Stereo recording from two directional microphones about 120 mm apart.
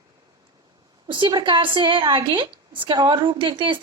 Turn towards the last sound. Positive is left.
turn(degrees=-45)  # may be behind; listen again after turning